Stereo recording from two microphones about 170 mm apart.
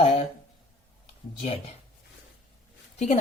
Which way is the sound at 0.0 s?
35° left (ahead or behind).